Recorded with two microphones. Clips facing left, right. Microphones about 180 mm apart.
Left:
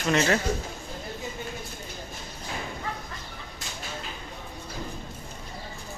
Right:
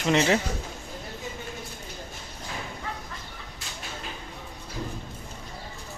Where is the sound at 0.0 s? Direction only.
20° right (ahead or behind).